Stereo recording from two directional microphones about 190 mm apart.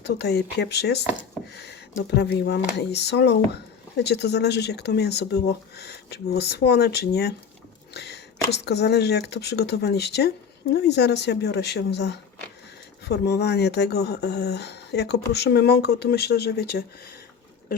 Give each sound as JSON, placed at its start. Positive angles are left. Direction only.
{"t": 0.0, "sound": "speech", "side_deg": 60}
{"t": 1.5, "sound": "a sound", "side_deg": 60}
{"t": 2.0, "sound": "speech", "side_deg": 60}